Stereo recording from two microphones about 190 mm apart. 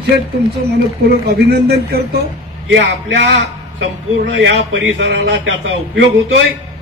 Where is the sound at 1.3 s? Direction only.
60° right (ahead or behind).